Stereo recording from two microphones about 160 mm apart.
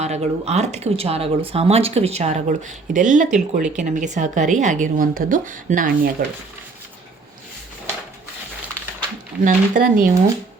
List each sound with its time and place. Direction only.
0.0 s speech: 40° right (ahead or behind); by 6.2 s 60° right (ahead or behind)
9.4 s speech: 55° right (ahead or behind)